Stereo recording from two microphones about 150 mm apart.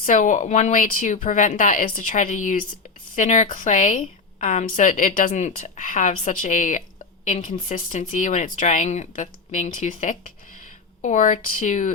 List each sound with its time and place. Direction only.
0.0 s speech: 60° left (ahead or behind)